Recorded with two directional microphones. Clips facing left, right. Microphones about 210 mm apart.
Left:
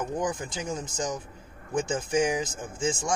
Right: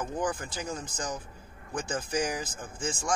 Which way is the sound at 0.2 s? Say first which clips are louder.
Left 2 dB; 20° left (ahead or behind).